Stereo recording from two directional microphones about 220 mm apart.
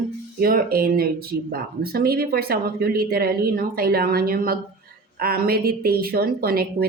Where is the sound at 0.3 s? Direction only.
40° right (ahead or behind).